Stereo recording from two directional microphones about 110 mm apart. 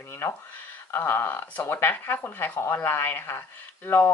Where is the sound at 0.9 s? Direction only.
20° left (ahead or behind).